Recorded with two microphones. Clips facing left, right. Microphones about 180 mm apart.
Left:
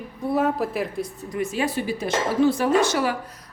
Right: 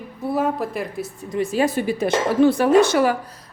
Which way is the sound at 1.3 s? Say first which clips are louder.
Right 5 dB; 35° right (ahead or behind).